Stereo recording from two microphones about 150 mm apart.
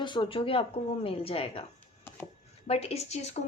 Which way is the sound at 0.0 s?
30° left (ahead or behind).